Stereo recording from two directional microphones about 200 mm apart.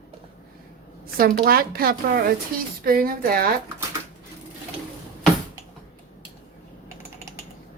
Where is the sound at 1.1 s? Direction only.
45° right (ahead or behind).